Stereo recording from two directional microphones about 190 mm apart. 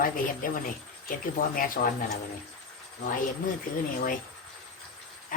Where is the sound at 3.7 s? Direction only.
45° left (ahead or behind).